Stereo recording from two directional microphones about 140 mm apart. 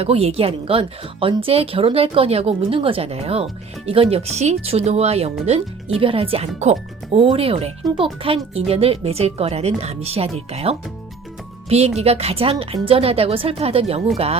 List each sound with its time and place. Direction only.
0.0 s speech: 45° right (ahead or behind)
11.9 s speech: 45° right (ahead or behind)